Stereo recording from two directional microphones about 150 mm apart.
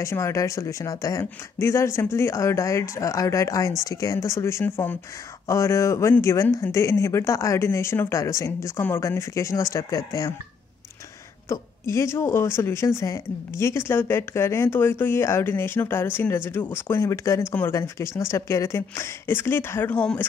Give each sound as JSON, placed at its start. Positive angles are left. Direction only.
{"t": 0.0, "sound": "speech", "side_deg": 20}
{"t": 11.4, "sound": "speech", "side_deg": 20}